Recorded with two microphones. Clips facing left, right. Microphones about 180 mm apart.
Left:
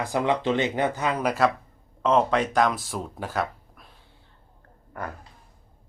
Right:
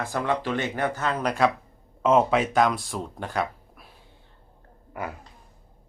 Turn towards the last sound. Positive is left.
turn(degrees=-10)  # may be behind; listen again after turning